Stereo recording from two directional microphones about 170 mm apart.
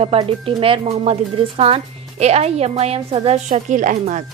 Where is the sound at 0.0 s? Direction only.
30° right (ahead or behind).